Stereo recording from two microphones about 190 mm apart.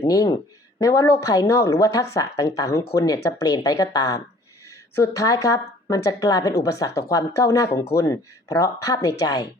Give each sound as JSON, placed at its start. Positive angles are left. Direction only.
{"t": 0.1, "sound": "a woman's voice", "side_deg": 20}